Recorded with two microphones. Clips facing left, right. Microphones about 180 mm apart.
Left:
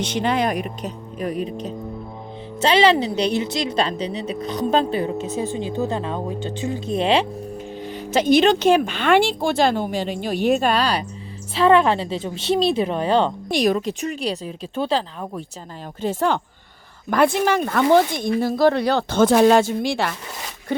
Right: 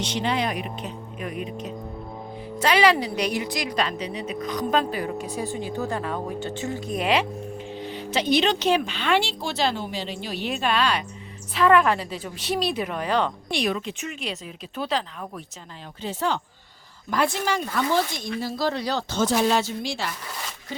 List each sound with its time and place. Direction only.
0.0 s a woman's voice: 50° left (ahead or behind); by 7.3 s 30° left (ahead or behind)
7.8 s a woman's voice: 45° left (ahead or behind); by 13.3 s 30° left (ahead or behind)
13.5 s speech: 40° left (ahead or behind)
16.0 s speech: 50° left (ahead or behind)